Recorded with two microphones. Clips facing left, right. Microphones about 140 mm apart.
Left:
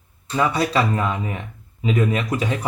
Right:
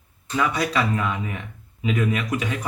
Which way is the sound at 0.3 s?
30° left (ahead or behind).